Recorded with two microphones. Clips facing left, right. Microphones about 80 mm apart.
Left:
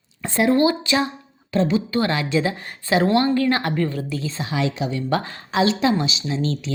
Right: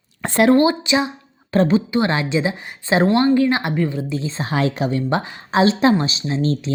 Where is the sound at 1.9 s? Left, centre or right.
Right.